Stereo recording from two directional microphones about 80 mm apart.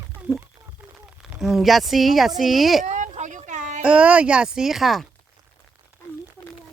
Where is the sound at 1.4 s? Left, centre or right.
Centre.